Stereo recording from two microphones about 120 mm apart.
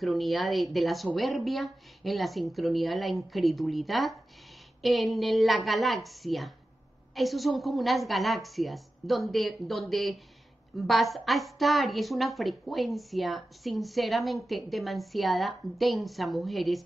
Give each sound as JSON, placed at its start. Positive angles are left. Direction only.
{"t": 0.0, "sound": "a woman's voice", "side_deg": 0}